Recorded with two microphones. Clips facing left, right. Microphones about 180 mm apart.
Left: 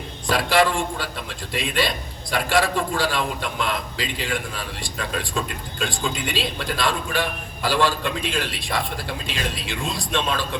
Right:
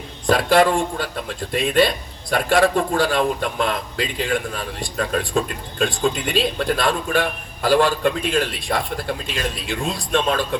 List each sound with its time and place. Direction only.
0.3 s a man's voice: 50° right (ahead or behind)